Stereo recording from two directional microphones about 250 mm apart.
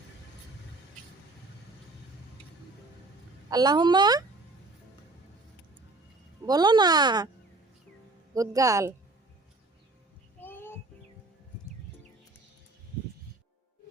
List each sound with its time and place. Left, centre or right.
3.5 s speech: centre
6.4 s speech: centre
8.3 s speech: centre
10.4 s babbling: centre